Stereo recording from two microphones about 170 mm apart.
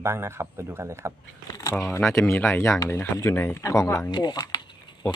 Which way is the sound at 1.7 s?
10° left (ahead or behind).